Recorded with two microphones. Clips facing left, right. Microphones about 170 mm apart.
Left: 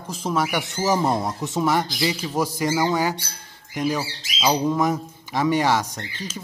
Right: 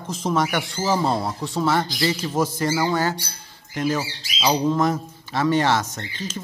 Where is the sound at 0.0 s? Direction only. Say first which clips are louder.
Right 2 dB; 5° left (ahead or behind).